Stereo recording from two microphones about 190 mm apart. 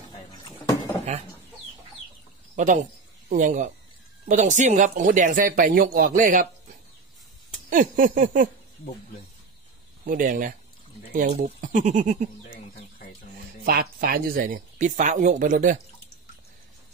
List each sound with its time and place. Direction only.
2.5 s speech: 40° right (ahead or behind)
7.7 s speech: 45° right (ahead or behind)
10.0 s speech: 45° right (ahead or behind)
13.7 s speech: 50° right (ahead or behind)